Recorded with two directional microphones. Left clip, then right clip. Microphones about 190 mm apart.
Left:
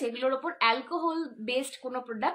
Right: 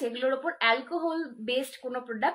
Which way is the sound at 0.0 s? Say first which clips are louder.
Right 1 dB; 20° left (ahead or behind).